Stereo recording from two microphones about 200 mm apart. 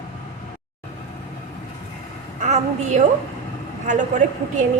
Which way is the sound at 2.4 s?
35° right (ahead or behind).